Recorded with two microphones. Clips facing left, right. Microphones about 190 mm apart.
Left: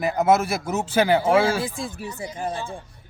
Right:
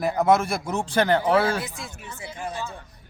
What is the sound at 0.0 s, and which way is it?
Speech, centre (ahead or behind).